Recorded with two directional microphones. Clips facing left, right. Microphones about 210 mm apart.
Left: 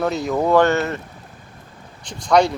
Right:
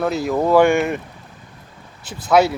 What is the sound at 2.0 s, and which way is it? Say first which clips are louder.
Speech: right 1 dB; 5° right (ahead or behind).